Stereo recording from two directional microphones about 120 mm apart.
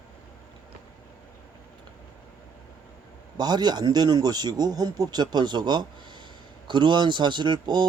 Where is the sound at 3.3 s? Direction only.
35° right (ahead or behind).